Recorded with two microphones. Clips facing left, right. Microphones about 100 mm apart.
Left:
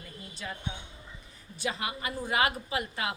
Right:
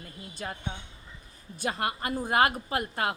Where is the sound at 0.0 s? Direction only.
45° right (ahead or behind).